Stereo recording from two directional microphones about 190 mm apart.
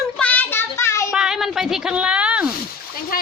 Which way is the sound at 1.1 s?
5° right (ahead or behind).